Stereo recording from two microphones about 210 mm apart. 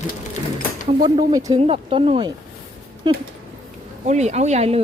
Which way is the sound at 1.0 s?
15° right (ahead or behind).